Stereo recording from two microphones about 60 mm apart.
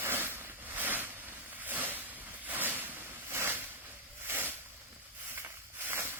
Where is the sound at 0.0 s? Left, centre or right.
Right.